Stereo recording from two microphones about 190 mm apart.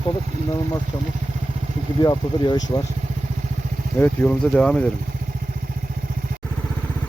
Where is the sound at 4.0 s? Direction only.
5° left (ahead or behind).